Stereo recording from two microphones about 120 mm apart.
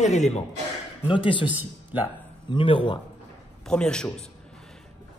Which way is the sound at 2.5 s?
45° left (ahead or behind).